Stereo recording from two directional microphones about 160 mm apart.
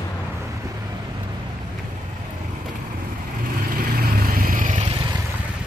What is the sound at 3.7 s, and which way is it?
Vehicle, 65° right (ahead or behind).